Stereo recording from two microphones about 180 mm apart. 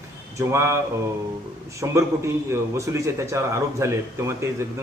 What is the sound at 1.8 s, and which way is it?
A man's voice, 15° right (ahead or behind).